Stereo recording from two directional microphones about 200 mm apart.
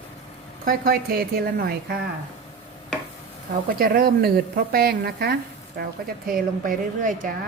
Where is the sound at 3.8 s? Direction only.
45° right (ahead or behind).